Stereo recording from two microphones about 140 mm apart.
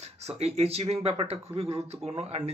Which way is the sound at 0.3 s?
50° right (ahead or behind).